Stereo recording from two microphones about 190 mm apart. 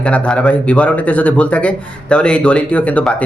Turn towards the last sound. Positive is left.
turn(degrees=5)  # may be behind; listen again after turning